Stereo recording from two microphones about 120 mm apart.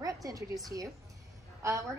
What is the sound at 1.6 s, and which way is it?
Speech, 25° right (ahead or behind).